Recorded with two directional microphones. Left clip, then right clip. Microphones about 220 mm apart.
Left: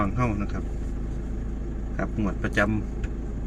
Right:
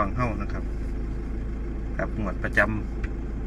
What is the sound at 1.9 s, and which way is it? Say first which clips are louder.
Speech: even; 20° left (ahead or behind).